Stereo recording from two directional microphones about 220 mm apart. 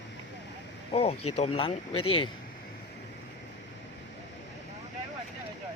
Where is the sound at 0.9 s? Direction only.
25° left (ahead or behind).